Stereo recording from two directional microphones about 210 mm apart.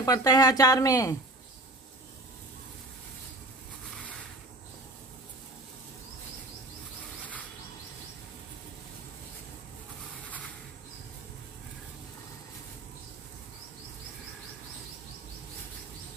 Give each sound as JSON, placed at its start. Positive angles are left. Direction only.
{"t": 0.0, "sound": "speech", "side_deg": 15}